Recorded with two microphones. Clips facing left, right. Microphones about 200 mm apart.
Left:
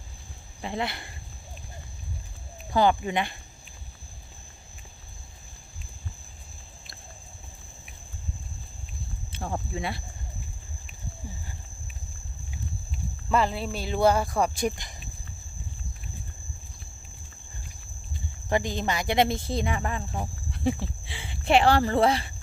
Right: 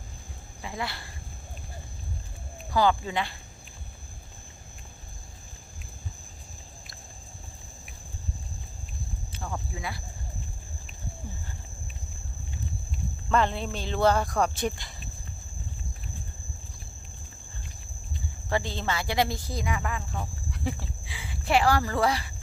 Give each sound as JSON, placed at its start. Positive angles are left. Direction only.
{"t": 0.6, "sound": "speech", "side_deg": 25}
{"t": 2.7, "sound": "speech", "side_deg": 20}
{"t": 9.4, "sound": "speech", "side_deg": 30}
{"t": 13.3, "sound": "speech", "side_deg": 5}
{"t": 18.4, "sound": "speech", "side_deg": 15}